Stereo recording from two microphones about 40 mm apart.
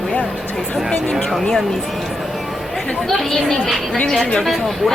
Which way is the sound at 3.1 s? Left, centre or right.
Centre.